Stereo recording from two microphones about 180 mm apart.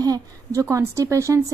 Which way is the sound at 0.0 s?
20° right (ahead or behind).